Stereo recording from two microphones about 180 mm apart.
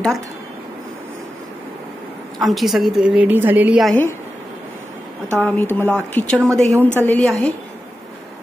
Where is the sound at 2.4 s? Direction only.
Centre (ahead or behind).